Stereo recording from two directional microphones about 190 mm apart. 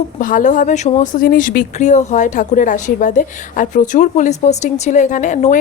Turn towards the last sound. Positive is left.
turn(degrees=40)  # may be behind; listen again after turning